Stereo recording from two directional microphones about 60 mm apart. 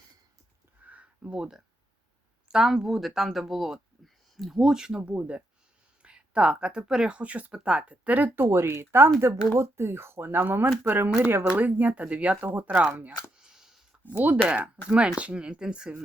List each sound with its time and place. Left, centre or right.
0.9 s a sound: right
2.5 s speech: centre
7.2 s speech: right
8.4 s speech: right
9.0 s speech: right
13.4 s a sound: centre
14.0 s speech: right